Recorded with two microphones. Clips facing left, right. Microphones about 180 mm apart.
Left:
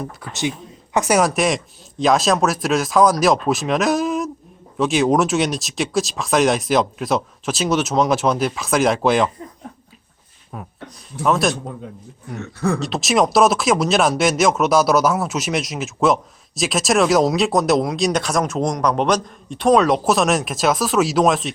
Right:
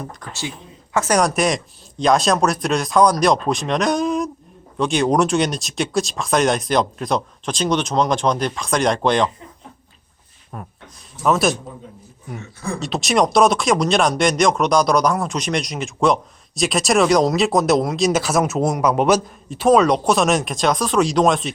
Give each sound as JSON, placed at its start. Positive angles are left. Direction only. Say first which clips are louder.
{"t": 0.2, "sound": "speech", "louder": "left 6 dB", "side_deg": 10}
{"t": 10.5, "sound": "speech", "louder": "left 2 dB", "side_deg": 5}
{"t": 12.4, "sound": "speech", "louder": "left 7 dB", "side_deg": 65}
{"t": 12.8, "sound": "speech", "louder": "right 3 dB", "side_deg": 0}